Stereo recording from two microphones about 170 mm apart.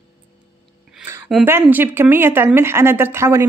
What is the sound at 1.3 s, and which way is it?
A woman's voice, 10° right (ahead or behind).